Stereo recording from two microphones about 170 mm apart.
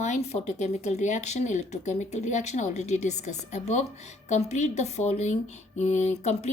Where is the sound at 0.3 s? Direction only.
40° left (ahead or behind).